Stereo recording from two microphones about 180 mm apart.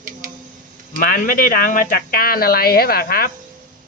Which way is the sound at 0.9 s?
50° left (ahead or behind).